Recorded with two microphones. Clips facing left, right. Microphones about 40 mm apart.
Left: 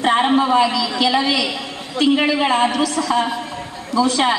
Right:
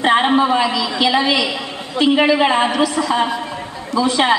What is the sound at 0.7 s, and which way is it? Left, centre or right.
A woman's voice, right.